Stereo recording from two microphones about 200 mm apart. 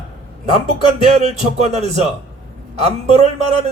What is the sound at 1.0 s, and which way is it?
A man's voice, 35° right (ahead or behind).